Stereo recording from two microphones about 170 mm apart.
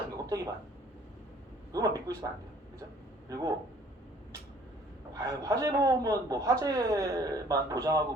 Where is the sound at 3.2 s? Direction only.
20° right (ahead or behind).